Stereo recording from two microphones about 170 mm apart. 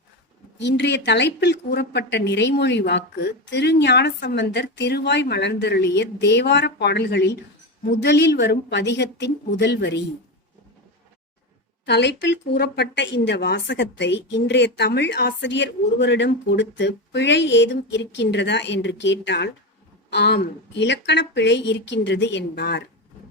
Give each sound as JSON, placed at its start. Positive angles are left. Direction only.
{"t": 0.6, "sound": "speech", "side_deg": 90}
{"t": 11.9, "sound": "speech", "side_deg": 90}